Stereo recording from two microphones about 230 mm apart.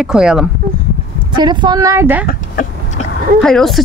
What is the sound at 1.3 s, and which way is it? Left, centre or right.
Speech, centre.